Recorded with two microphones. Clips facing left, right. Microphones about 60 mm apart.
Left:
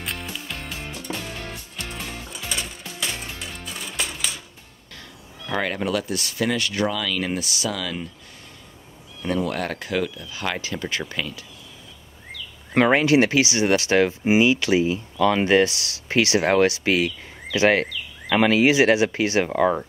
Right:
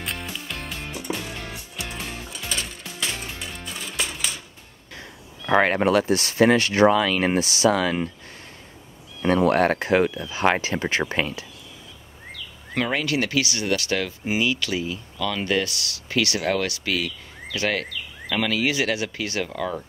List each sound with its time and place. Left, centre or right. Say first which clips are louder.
0.0 s music: even; centre
0.9 s music: right 3 dB; centre
5.5 s speech: right 6 dB; right
9.2 s speech: right 6 dB; right
12.7 s speech: left 7 dB; left